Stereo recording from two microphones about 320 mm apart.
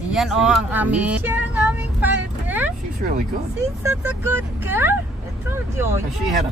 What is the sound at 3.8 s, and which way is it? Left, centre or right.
Speech, centre.